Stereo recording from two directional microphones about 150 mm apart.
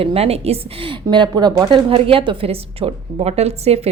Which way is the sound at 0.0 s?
40° right (ahead or behind).